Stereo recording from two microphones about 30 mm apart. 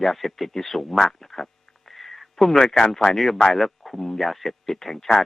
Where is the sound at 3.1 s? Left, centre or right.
Centre.